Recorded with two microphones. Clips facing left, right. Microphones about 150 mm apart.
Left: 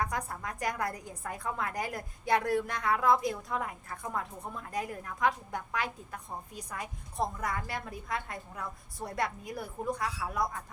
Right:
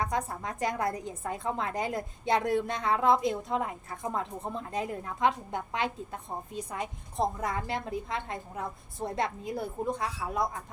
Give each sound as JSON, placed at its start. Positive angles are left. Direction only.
{"t": 0.0, "sound": "a woman's voice", "side_deg": -25}